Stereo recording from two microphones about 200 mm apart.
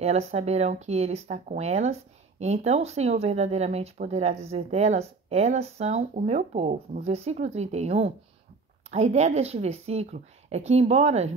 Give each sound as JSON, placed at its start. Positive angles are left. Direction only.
{"t": 0.0, "sound": "speech", "side_deg": -30}